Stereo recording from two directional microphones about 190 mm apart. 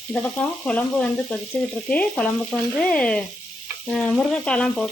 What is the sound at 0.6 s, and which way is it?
Frying, 5° left (ahead or behind).